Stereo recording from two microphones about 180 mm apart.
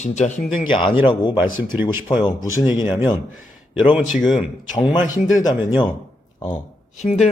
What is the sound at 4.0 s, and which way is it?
Speech, centre (ahead or behind).